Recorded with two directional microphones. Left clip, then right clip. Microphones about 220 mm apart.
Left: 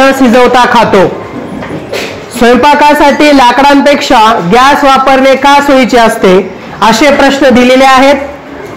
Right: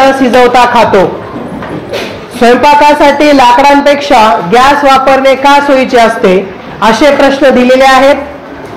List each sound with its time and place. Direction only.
0.4 s speech: 50° left (ahead or behind)
2.4 s speech: 50° left (ahead or behind)